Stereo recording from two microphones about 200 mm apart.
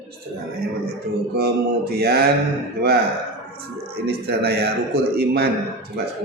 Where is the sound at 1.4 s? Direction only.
50° right (ahead or behind).